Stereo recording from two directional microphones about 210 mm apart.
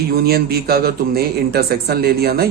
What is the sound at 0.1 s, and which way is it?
A man's voice, 45° right (ahead or behind).